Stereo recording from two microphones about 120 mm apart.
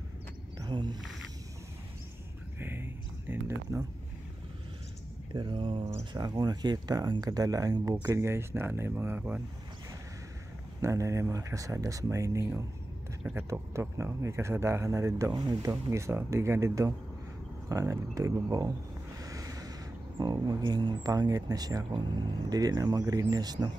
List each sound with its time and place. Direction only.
0.6 s speech: 40° right (ahead or behind)
2.6 s a sound: 15° right (ahead or behind)
5.3 s speech: 40° right (ahead or behind)
5.9 s speech: 25° right (ahead or behind)
10.8 s speech: 25° right (ahead or behind)
15.3 s speech: 35° right (ahead or behind)
15.7 s speech: 25° right (ahead or behind)
17.6 s a sound: 25° right (ahead or behind)
20.2 s speech: 35° right (ahead or behind)